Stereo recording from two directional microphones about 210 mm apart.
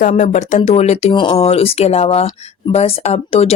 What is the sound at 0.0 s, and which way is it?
Speech, 35° left (ahead or behind).